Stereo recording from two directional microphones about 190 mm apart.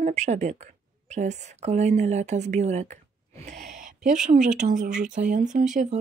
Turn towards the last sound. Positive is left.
turn(degrees=-40)  # may be behind; listen again after turning